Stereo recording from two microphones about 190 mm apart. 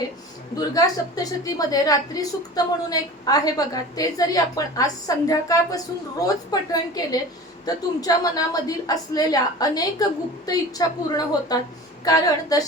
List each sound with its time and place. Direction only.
0.5 s a woman's voice: 20° left (ahead or behind)